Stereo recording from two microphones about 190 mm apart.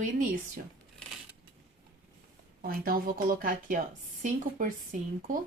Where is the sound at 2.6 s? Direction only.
50° right (ahead or behind).